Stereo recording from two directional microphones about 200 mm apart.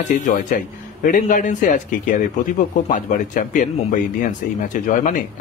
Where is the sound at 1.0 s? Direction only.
40° left (ahead or behind).